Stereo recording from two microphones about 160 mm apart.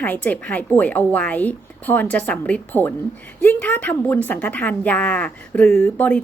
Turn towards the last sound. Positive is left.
turn(degrees=10)  # may be behind; listen again after turning